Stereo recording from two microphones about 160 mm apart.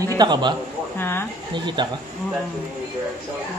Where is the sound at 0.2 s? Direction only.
30° right (ahead or behind).